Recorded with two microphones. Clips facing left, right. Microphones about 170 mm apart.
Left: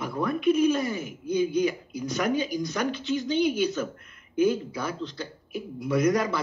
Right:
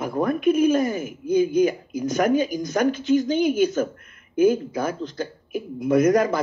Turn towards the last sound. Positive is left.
turn(degrees=-50)  # may be behind; listen again after turning